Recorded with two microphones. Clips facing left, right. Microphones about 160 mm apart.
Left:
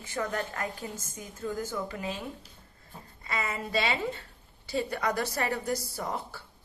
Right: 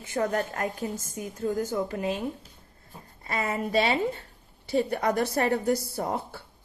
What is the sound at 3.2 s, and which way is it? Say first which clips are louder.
Speech: right 4 dB; 50° right (ahead or behind).